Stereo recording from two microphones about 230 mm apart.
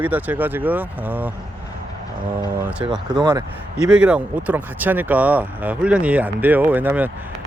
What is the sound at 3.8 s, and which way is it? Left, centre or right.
Speech, centre.